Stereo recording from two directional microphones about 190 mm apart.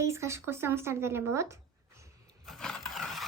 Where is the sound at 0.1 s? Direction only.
15° right (ahead or behind).